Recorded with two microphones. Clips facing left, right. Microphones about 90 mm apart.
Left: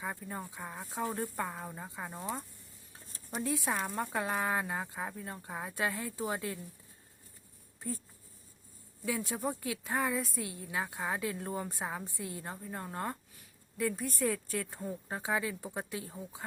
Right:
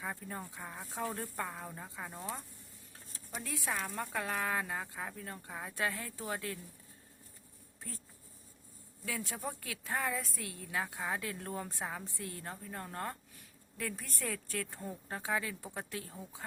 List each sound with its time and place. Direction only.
0.0 s a woman's voice: 5° left (ahead or behind)
9.0 s a woman's voice: 10° left (ahead or behind)